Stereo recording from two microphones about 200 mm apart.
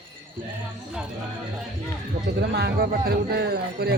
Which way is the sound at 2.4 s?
55° right (ahead or behind).